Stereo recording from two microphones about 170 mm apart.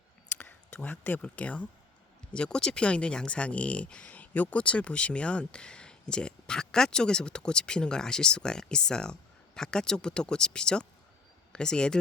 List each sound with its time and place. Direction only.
0.3 s speech: 10° left (ahead or behind)